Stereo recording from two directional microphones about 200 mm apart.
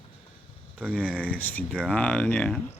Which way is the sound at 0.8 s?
5° right (ahead or behind).